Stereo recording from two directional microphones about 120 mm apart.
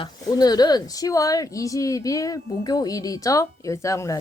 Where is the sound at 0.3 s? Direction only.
30° left (ahead or behind).